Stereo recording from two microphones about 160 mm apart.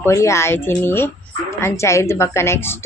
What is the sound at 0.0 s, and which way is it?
A woman's voice, 20° left (ahead or behind).